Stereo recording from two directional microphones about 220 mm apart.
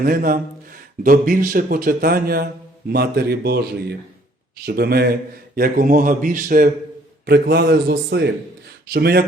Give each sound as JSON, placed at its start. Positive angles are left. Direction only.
{"t": 0.0, "sound": "a man's voice", "side_deg": -40}